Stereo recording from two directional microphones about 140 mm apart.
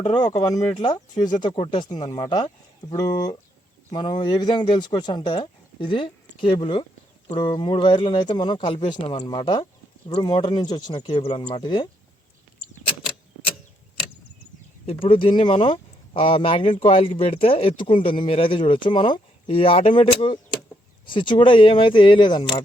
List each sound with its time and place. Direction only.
0.3 s speech: 25° left (ahead or behind)
14.8 s speech: 40° left (ahead or behind)